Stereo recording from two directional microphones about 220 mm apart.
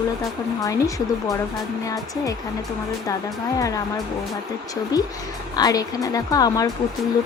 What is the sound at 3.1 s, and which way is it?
Speech, 15° left (ahead or behind).